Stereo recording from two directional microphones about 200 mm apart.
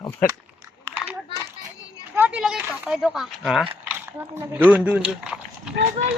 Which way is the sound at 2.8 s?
Centre (ahead or behind).